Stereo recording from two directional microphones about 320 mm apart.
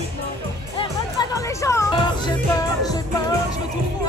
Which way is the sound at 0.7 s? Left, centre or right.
Centre.